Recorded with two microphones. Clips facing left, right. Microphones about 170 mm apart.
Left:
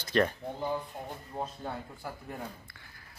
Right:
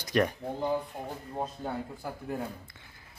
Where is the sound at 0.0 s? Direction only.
15° right (ahead or behind).